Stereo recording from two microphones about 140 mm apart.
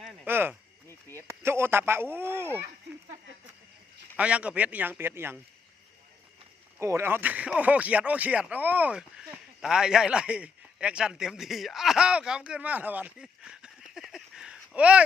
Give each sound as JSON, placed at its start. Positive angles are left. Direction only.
{"t": 0.3, "sound": "a man's voice", "side_deg": -15}
{"t": 0.9, "sound": "a sound", "side_deg": 20}
{"t": 1.4, "sound": "a man's voice", "side_deg": -15}
{"t": 4.2, "sound": "a man's voice", "side_deg": -10}
{"t": 6.7, "sound": "speech", "side_deg": -20}